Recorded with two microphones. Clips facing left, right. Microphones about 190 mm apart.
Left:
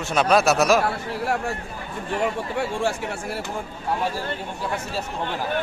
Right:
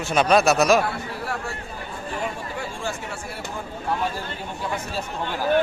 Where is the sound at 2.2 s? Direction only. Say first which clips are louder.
Left 5 dB; 65° left (ahead or behind).